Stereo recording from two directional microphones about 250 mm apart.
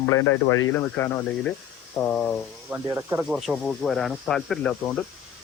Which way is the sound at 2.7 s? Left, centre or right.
Centre.